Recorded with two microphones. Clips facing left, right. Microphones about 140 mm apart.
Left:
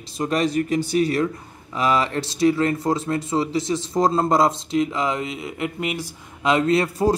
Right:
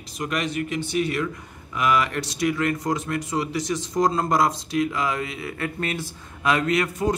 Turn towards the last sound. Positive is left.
turn(degrees=30)  # may be behind; listen again after turning